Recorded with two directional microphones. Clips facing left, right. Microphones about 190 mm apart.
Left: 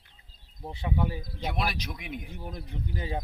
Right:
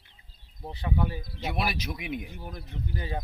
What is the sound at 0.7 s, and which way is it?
Speech, 20° left (ahead or behind).